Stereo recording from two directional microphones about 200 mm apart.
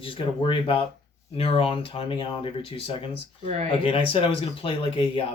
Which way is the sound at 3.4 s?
35° right (ahead or behind).